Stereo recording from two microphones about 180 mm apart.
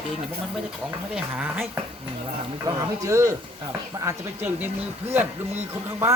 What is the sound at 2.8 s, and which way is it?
Speech, 15° right (ahead or behind).